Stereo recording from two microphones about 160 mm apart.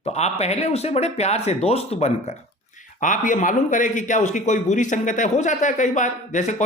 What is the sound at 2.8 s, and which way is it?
A man's voice, 55° left (ahead or behind).